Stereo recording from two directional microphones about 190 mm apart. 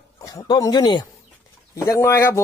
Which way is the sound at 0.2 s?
20° left (ahead or behind).